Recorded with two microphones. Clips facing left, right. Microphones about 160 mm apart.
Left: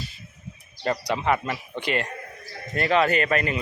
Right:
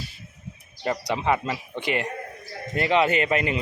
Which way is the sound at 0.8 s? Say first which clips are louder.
Left 1 dB; 20° right (ahead or behind).